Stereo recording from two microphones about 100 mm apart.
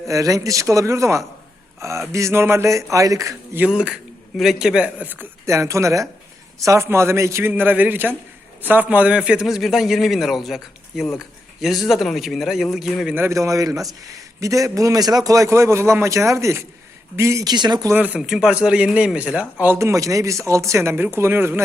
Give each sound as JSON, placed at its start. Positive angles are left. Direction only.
{"t": 0.1, "sound": "a man's voice", "side_deg": -35}
{"t": 3.7, "sound": "a man's voice", "side_deg": -10}
{"t": 13.1, "sound": "a man's voice", "side_deg": -30}
{"t": 17.4, "sound": "speech", "side_deg": -45}
{"t": 17.9, "sound": "speech", "side_deg": -15}
{"t": 18.2, "sound": "speech", "side_deg": -5}